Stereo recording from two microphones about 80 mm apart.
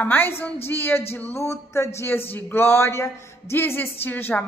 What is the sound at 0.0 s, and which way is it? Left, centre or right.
A man's voice, left.